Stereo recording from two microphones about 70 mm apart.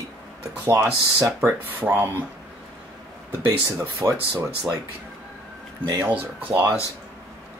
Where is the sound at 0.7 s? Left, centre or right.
Right.